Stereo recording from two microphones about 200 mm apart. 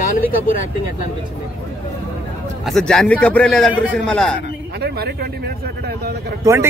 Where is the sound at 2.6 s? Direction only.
Centre (ahead or behind).